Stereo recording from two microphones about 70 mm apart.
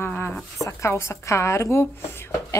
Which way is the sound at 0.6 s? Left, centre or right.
Left.